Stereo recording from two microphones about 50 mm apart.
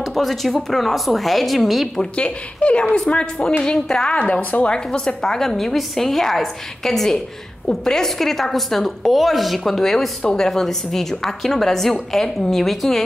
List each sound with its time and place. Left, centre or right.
0.0 s a woman's voice: centre
2.0 s a woman's voice: left
4.1 s a woman's voice: left; by 13.0 s centre